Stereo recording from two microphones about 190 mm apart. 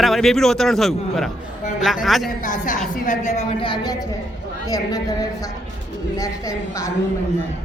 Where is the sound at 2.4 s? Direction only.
45° left (ahead or behind); by 6.9 s 15° left (ahead or behind).